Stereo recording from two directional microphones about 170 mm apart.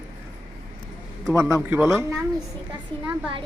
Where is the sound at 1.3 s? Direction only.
15° right (ahead or behind).